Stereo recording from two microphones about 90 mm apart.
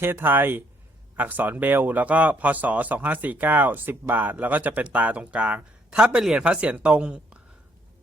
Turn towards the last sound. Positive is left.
turn(degrees=-10)  # may be behind; listen again after turning